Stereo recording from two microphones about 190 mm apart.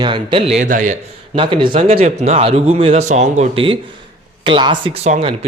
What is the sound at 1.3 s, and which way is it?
A man's voice, 25° right (ahead or behind).